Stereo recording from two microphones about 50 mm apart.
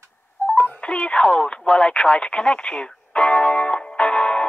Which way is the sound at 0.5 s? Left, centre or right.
Left.